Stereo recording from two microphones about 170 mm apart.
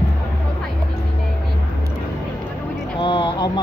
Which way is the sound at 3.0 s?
30° left (ahead or behind).